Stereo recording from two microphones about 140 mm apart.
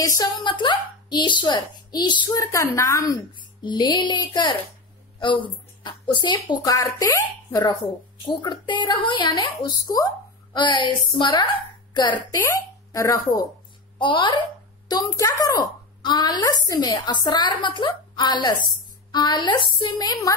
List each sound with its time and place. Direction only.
0.0 s speech: 30° left (ahead or behind)
3.3 s a woman's voice: 35° left (ahead or behind)
12.4 s speech: 20° left (ahead or behind)
13.9 s a child's voice: 35° left (ahead or behind)